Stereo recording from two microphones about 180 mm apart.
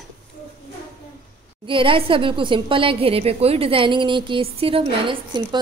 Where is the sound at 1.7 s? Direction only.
30° right (ahead or behind).